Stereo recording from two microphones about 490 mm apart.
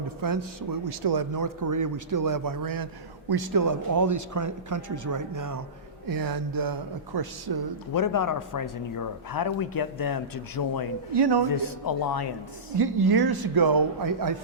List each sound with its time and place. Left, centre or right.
0.2 s a man's voice: right
7.9 s speech: left
11.1 s a man's voice: right
11.5 s speech: left
12.7 s a man's voice: right